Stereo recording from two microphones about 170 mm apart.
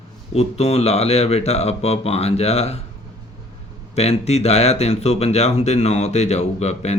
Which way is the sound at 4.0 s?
40° left (ahead or behind).